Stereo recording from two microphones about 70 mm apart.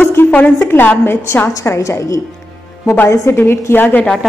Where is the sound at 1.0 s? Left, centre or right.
Left.